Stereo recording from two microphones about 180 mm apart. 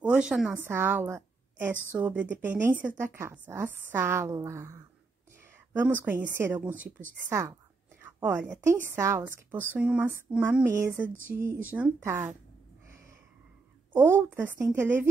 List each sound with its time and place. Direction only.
0.0 s a woman's voice: 5° right (ahead or behind)
6.8 s speech: 50° right (ahead or behind)
7.2 s speech: 15° right (ahead or behind)
8.0 s a sound: 10° right (ahead or behind)
8.5 s speech: 10° right (ahead or behind)
13.9 s speech: 15° right (ahead or behind)